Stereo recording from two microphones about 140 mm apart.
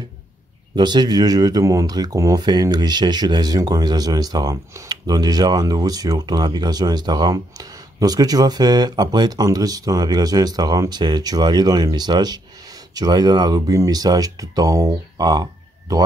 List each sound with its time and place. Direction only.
0.7 s speech: 30° right (ahead or behind)